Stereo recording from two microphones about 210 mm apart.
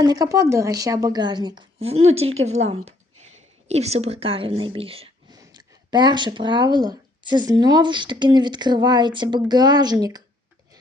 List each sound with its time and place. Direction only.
0.0 s speech: 15° right (ahead or behind)